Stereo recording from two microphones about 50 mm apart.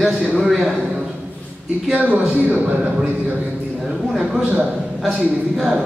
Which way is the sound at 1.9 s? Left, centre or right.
Right.